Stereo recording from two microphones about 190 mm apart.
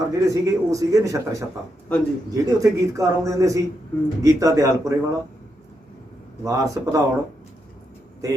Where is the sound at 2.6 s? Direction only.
15° right (ahead or behind).